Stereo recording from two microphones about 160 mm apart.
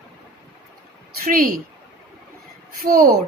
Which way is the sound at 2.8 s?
65° right (ahead or behind).